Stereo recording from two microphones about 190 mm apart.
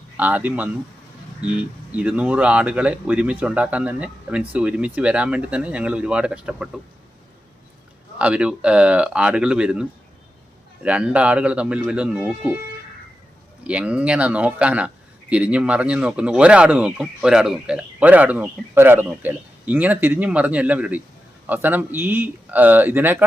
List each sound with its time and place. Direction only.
0.2 s speech: 10° right (ahead or behind)
8.2 s speech: 5° right (ahead or behind)
10.8 s speech: 5° right (ahead or behind)
13.7 s speech: 5° right (ahead or behind)